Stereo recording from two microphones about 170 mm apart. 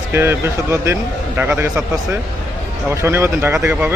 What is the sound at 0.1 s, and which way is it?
Speech, 15° right (ahead or behind).